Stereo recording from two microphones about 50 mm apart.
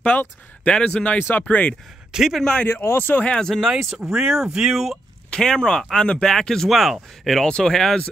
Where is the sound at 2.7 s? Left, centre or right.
Left.